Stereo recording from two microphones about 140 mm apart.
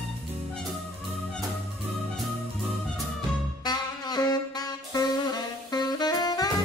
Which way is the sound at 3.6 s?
30° left (ahead or behind).